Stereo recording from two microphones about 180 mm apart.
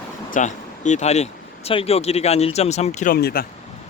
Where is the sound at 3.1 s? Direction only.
60° left (ahead or behind).